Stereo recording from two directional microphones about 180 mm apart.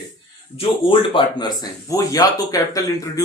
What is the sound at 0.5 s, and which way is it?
Speech, 30° left (ahead or behind).